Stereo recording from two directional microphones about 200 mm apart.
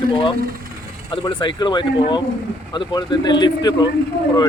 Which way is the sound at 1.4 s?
20° left (ahead or behind).